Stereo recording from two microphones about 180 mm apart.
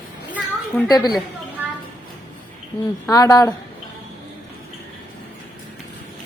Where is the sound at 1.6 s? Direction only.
10° right (ahead or behind).